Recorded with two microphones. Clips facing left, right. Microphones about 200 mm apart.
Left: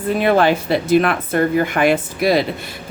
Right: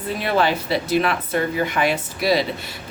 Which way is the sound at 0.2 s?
50° left (ahead or behind).